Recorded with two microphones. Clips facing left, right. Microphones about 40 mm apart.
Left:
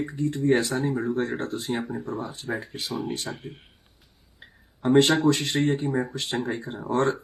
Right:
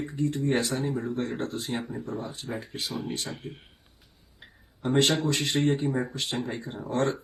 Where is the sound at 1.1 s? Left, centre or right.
Left.